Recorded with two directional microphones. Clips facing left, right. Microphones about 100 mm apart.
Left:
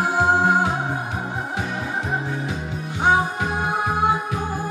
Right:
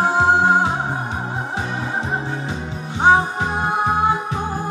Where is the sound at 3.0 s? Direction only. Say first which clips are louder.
Right 4 dB; 30° right (ahead or behind).